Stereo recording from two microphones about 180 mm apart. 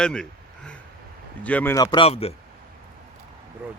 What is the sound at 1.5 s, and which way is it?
Speech, 10° left (ahead or behind).